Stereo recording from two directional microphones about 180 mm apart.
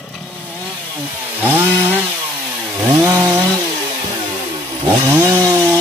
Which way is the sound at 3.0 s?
15° right (ahead or behind).